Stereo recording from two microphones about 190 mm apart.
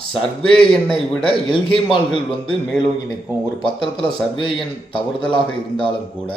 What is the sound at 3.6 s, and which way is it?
A man's voice, 25° left (ahead or behind).